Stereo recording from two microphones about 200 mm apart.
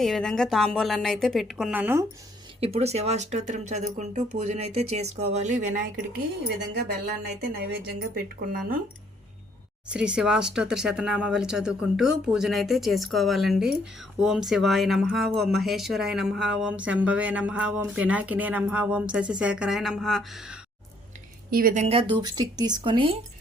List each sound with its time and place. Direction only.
0.0 s speech: centre (ahead or behind)
2.6 s speech: 30° right (ahead or behind)
6.8 s speech: 50° right (ahead or behind)
9.9 s speech: 5° right (ahead or behind)
21.5 s speech: 45° right (ahead or behind)
21.8 s speech: 25° right (ahead or behind)